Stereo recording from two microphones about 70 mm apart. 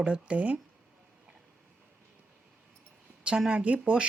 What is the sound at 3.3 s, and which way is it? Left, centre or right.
Speech, centre.